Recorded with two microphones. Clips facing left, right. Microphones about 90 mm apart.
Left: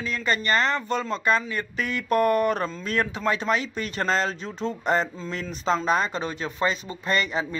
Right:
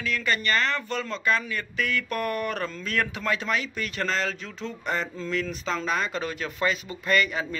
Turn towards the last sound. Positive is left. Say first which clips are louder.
# right 1 dB
turn(degrees=30)  # may be behind; listen again after turning